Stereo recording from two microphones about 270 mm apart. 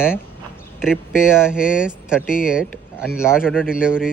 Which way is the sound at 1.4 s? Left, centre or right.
Centre.